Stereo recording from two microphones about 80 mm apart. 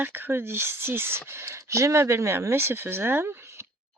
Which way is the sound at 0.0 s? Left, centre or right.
Right.